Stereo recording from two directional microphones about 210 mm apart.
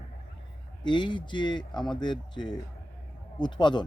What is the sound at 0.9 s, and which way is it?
Speech, 20° left (ahead or behind).